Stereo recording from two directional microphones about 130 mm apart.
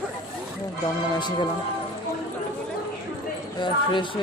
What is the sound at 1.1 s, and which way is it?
Speech, 35° left (ahead or behind).